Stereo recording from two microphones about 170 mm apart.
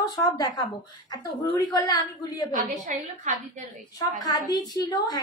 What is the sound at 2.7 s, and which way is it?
A woman's voice, 45° right (ahead or behind).